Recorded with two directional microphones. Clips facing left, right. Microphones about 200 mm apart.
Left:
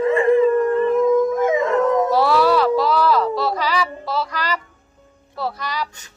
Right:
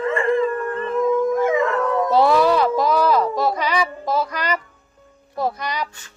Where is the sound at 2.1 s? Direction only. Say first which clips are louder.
Even; 20° right (ahead or behind).